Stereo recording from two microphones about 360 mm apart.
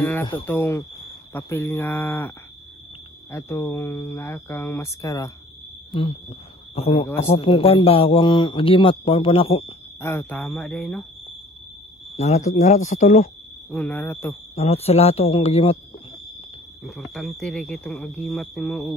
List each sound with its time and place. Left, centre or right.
0.0 s a man's voice: centre
6.7 s a man's voice: centre
12.2 s speech: centre
13.7 s speech: centre
14.5 s a man's voice: centre
16.8 s speech: centre